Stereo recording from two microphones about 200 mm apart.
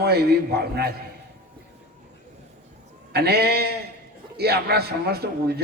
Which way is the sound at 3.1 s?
50° right (ahead or behind).